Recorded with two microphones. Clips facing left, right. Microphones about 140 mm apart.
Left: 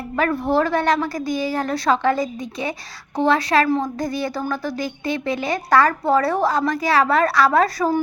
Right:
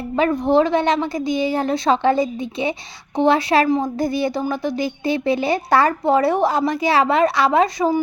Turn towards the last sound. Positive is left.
turn(degrees=-20)  # may be behind; listen again after turning